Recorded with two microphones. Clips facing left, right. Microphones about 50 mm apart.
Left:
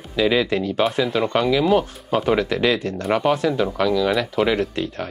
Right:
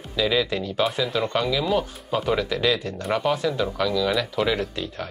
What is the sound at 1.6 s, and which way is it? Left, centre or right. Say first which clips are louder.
Speech: left 5 dB; left.